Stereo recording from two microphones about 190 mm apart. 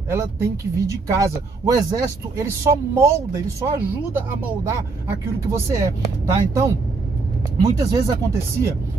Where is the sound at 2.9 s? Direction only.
15° right (ahead or behind).